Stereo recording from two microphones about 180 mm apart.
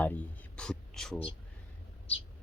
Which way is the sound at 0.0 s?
5° left (ahead or behind).